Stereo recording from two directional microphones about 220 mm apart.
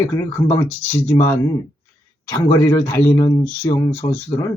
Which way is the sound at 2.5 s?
15° left (ahead or behind).